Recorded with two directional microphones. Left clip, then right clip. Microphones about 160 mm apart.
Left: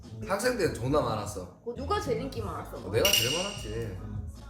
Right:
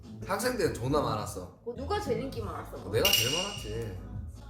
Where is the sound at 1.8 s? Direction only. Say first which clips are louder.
Left 2 dB; 20° left (ahead or behind).